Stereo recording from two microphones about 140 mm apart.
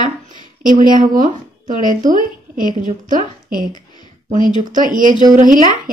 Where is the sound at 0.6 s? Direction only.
70° right (ahead or behind).